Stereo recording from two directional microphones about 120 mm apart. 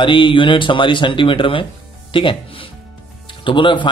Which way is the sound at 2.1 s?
45° left (ahead or behind).